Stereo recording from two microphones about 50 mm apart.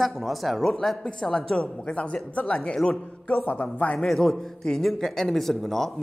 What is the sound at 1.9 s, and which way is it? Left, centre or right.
A man's voice, left.